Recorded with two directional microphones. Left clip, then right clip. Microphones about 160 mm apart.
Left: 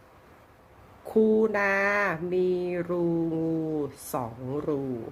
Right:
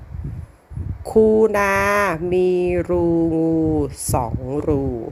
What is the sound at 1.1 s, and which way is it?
Speech, 45° right (ahead or behind).